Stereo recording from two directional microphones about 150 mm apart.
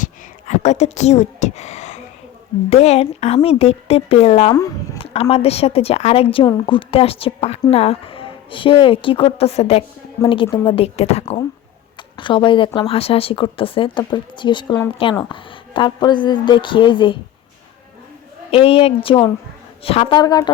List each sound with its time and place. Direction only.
0.0 s a sound: 50° left (ahead or behind)
2.6 s speech: 45° left (ahead or behind)
11.9 s speech: 35° left (ahead or behind)
18.5 s speech: 40° left (ahead or behind)
20.1 s a woman's voice: 25° left (ahead or behind)